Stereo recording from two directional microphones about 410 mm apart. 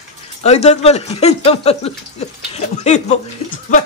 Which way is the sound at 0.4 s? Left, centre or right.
Centre.